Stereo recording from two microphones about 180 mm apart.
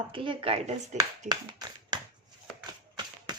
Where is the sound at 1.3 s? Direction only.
20° right (ahead or behind).